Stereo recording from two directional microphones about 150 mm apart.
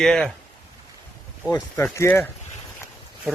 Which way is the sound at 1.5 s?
20° left (ahead or behind).